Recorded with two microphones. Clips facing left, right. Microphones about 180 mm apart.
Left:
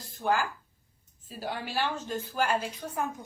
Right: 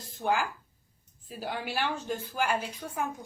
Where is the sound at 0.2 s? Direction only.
15° right (ahead or behind).